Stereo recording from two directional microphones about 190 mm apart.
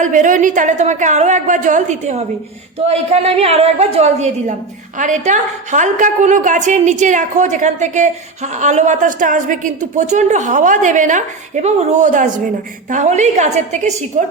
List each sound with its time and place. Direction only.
0.0 s a woman's voice: 40° right (ahead or behind)